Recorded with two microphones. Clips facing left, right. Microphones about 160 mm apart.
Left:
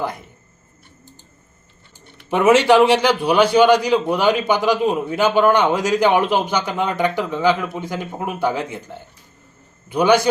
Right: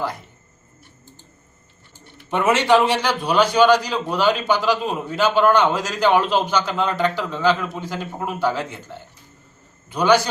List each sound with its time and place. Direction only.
2.3 s a man's voice: 10° left (ahead or behind)